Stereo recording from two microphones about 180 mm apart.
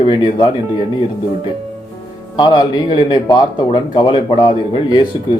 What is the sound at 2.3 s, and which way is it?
Speech, 25° left (ahead or behind).